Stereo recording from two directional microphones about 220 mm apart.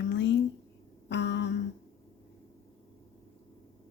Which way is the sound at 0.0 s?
55° left (ahead or behind).